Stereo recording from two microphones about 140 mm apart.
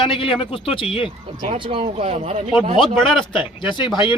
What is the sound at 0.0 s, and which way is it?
Speech, 40° left (ahead or behind).